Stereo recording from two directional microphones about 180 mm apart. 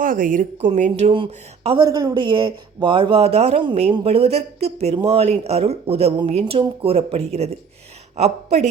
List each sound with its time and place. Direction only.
0.0 s speech: 50° right (ahead or behind)
1.1 s speech: 30° right (ahead or behind)